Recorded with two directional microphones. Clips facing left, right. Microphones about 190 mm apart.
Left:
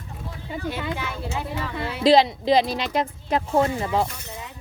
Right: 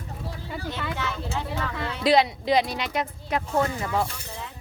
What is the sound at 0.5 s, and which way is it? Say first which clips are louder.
Speech: left 4 dB; 10° left (ahead or behind).